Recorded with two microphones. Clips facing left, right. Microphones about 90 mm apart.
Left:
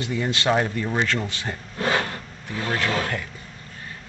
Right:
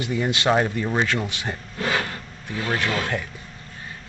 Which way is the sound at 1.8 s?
30° left (ahead or behind).